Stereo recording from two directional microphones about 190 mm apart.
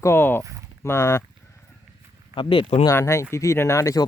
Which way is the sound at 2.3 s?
25° left (ahead or behind).